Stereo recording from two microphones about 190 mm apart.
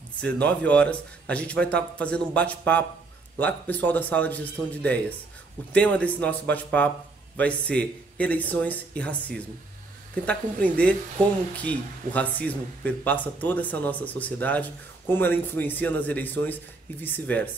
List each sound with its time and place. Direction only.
0.2 s speech: 5° left (ahead or behind)
5.7 s speech: 5° left (ahead or behind)